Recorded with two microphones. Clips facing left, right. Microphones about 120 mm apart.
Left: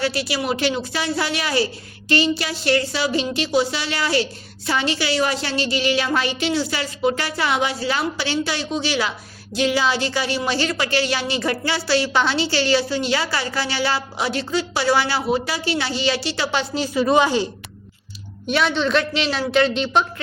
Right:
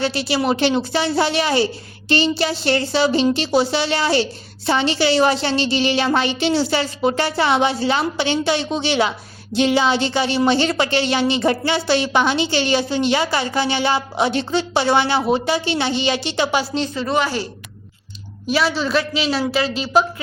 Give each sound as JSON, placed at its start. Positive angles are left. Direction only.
{"t": 0.0, "sound": "a woman's voice", "side_deg": -25}
{"t": 16.7, "sound": "a woman's voice", "side_deg": 10}
{"t": 18.4, "sound": "a man's voice", "side_deg": 0}